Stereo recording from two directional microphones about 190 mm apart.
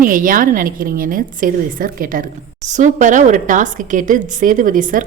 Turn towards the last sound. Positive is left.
turn(degrees=-45)  # may be behind; listen again after turning